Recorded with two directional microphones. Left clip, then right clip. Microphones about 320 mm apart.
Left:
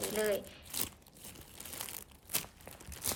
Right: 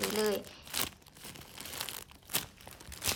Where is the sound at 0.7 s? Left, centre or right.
Centre.